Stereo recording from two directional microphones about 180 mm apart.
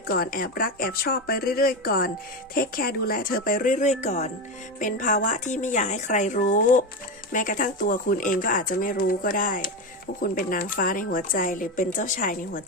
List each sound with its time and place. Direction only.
0.1 s speech: 55° left (ahead or behind)